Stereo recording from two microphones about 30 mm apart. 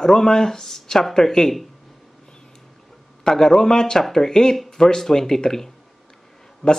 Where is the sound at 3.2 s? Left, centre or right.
Centre.